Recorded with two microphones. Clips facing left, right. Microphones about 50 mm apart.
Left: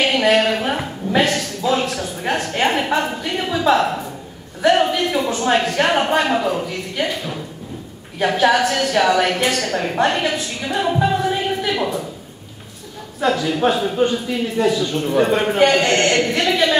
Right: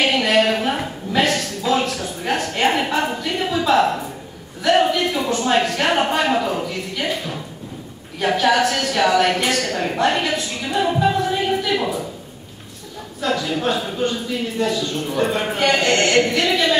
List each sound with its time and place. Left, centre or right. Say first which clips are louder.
0.0 s a sound: left 1 dB; centre
3.3 s a woman's voice: left 2 dB; centre
13.2 s speech: left 3 dB; left
14.1 s speech: left 3 dB; centre